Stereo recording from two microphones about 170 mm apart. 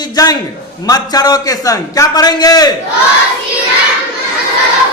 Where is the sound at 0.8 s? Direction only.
20° left (ahead or behind).